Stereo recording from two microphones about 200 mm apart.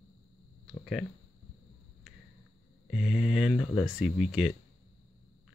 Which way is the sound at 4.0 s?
Centre (ahead or behind).